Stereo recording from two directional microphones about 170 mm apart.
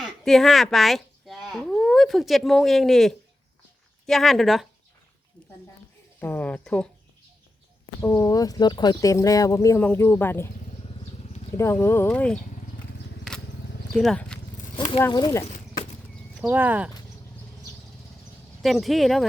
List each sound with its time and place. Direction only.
0.0 s speech: centre (ahead or behind)
6.1 s speech: 10° left (ahead or behind)
8.0 s speech: 20° left (ahead or behind)
11.5 s speech: 15° left (ahead or behind)
13.9 s speech: centre (ahead or behind)
14.8 s speech: 30° left (ahead or behind)
15.1 s speech: 20° left (ahead or behind)
16.4 s speech: 10° right (ahead or behind)
18.6 s speech: centre (ahead or behind)